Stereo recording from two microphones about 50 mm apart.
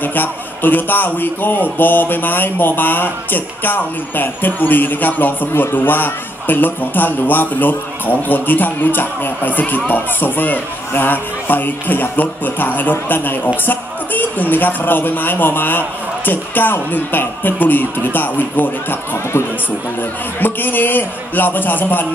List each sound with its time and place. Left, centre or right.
0.0 s speech: left
20.0 s speech: left